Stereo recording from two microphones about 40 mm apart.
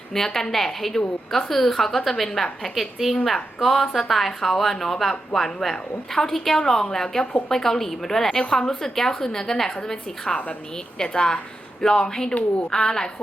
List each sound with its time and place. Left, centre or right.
0.1 s a woman's voice: centre